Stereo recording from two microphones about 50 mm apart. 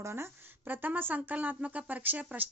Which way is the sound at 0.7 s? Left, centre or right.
Right.